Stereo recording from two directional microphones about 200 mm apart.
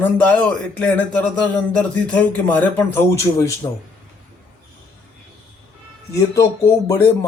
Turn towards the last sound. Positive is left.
turn(degrees=15)  # may be behind; listen again after turning